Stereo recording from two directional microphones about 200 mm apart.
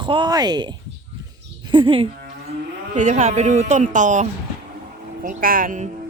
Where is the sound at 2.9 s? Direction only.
35° right (ahead or behind).